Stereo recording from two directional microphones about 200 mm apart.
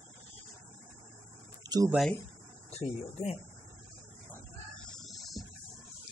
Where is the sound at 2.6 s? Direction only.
30° left (ahead or behind).